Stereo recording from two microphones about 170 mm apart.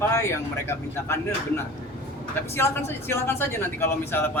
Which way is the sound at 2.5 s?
15° left (ahead or behind).